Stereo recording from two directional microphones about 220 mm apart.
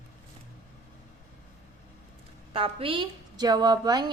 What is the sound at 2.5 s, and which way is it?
A woman's voice, 25° right (ahead or behind).